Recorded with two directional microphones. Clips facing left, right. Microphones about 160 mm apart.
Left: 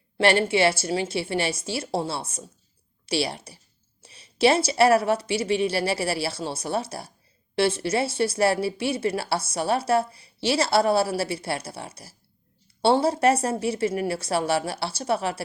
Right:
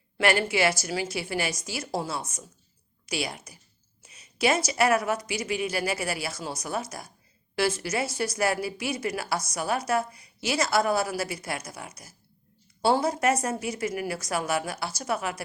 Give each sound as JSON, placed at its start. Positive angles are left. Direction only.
{"t": 0.2, "sound": "a woman's voice", "side_deg": 30}